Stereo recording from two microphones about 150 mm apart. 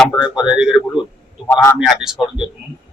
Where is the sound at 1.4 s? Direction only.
15° left (ahead or behind).